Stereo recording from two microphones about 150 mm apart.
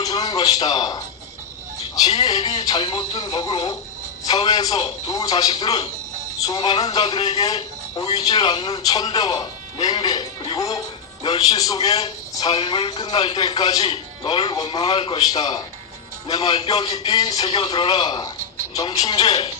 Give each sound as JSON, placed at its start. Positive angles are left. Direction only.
{"t": 0.0, "sound": "a man's voice", "side_deg": 25}
{"t": 8.9, "sound": "speech", "side_deg": 25}
{"t": 12.5, "sound": "speech", "side_deg": 35}
{"t": 15.2, "sound": "speech", "side_deg": 25}
{"t": 17.4, "sound": "speech", "side_deg": 35}